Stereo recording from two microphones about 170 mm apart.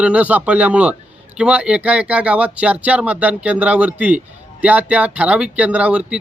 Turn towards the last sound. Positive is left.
turn(degrees=-5)  # may be behind; listen again after turning